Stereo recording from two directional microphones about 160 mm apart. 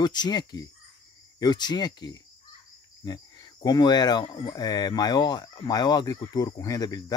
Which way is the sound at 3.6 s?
25° left (ahead or behind).